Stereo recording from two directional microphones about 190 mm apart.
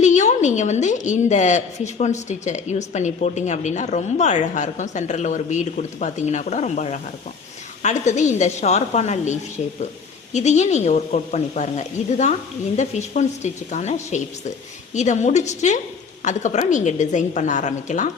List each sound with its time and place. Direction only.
0.0 s a woman's voice: 40° left (ahead or behind)